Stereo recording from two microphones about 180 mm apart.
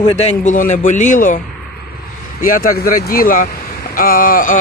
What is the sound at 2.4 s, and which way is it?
A man's voice, 50° left (ahead or behind).